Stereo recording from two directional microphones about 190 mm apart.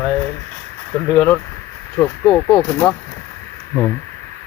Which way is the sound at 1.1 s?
10° left (ahead or behind).